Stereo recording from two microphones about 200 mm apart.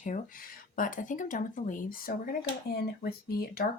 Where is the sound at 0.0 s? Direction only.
40° left (ahead or behind).